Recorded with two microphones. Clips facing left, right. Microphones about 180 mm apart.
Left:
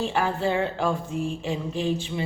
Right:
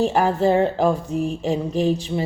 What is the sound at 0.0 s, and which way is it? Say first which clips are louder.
Mantra: right 7 dB; 40° right (ahead or behind).